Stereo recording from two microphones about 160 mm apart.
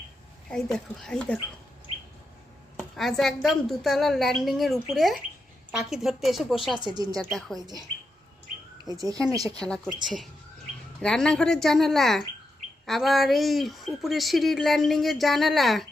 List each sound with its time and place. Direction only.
0.4 s speech: 5° left (ahead or behind)
2.9 s speech: centre (ahead or behind)
6.7 s speech: 25° right (ahead or behind)
7.2 s speech: centre (ahead or behind)
8.9 s speech: 20° right (ahead or behind)
9.6 s speech: 5° left (ahead or behind)
11.0 s speech: 5° left (ahead or behind)